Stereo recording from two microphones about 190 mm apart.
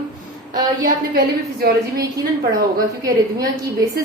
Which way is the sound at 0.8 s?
50° right (ahead or behind).